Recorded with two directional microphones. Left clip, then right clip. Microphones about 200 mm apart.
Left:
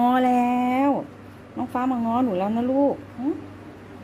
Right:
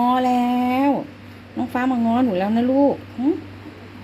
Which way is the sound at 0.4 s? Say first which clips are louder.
Right 1 dB; 5° right (ahead or behind).